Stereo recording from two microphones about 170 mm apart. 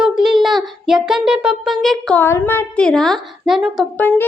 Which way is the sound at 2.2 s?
15° left (ahead or behind).